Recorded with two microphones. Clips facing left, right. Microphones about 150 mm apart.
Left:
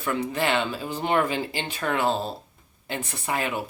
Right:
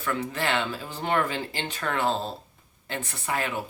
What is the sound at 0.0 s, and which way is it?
Speech, 15° left (ahead or behind).